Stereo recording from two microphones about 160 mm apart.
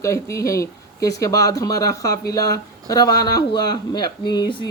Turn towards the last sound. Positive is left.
turn(degrees=25)  # may be behind; listen again after turning